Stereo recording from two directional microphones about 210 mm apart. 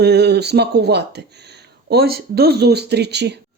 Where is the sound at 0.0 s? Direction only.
50° right (ahead or behind).